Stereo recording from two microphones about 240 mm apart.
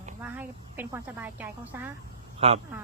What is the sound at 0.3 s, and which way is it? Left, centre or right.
Speech, centre.